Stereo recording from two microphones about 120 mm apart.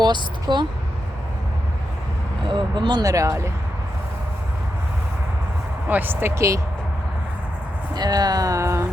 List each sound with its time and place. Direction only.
0.0 s a woman's voice: 40° right (ahead or behind)
2.5 s speech: 40° right (ahead or behind); by 3.5 s 25° right (ahead or behind)
5.9 s speech: 15° right (ahead or behind)
7.9 s speech: 35° right (ahead or behind)